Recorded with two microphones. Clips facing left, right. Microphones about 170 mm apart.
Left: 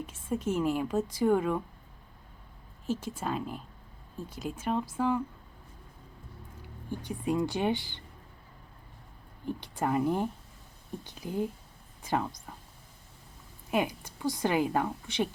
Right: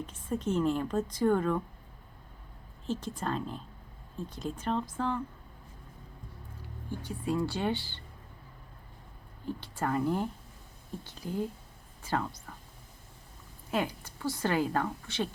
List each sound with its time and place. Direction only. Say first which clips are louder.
0.0 s a woman's voice: left 1 dB; 10° left (ahead or behind)
2.8 s a woman's voice: left 1 dB; 10° left (ahead or behind)
6.6 s speech: left 1 dB; 15° left (ahead or behind)
9.5 s a woman's voice: left 2 dB; 15° left (ahead or behind)
13.7 s a woman's voice: left 2 dB; 15° left (ahead or behind)